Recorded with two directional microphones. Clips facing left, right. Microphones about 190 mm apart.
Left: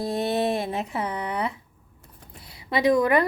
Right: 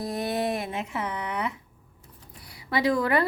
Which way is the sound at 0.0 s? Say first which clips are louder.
Left 3 dB; 25° left (ahead or behind).